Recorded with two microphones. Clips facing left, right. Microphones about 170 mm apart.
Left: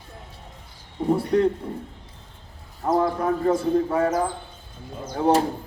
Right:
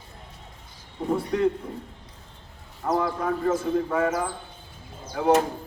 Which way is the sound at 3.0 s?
35° left (ahead or behind).